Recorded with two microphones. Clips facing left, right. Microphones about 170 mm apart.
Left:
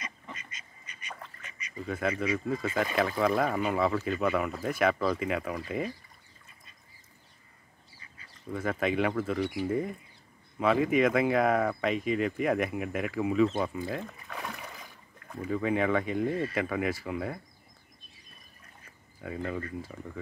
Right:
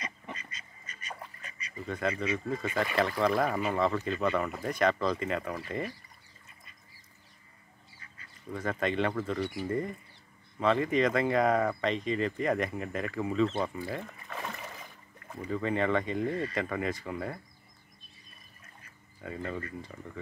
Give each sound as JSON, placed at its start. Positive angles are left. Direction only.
{"t": 0.0, "sound": "duck", "side_deg": -35}
{"t": 1.9, "sound": "speech", "side_deg": 5}
{"t": 8.5, "sound": "speech", "side_deg": 5}
{"t": 19.2, "sound": "speech", "side_deg": 5}